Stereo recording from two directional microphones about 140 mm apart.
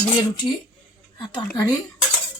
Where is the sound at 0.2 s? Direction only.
30° left (ahead or behind).